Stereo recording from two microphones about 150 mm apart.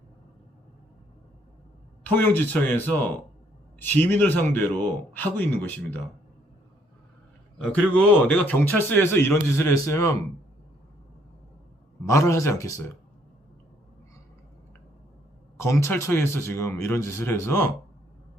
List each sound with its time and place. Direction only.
2.1 s speech: 10° left (ahead or behind)
7.6 s speech: 10° left (ahead or behind)
12.0 s speech: 20° left (ahead or behind)
15.5 s speech: 20° left (ahead or behind)